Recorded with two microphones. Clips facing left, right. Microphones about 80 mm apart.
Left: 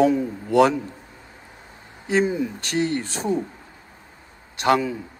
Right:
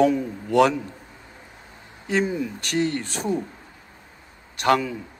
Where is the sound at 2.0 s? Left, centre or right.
Left.